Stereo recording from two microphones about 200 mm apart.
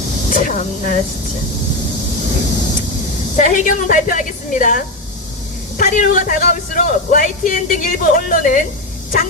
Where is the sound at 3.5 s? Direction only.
40° left (ahead or behind).